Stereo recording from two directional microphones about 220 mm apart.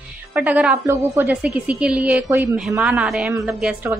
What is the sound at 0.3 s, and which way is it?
A woman's voice, 5° right (ahead or behind).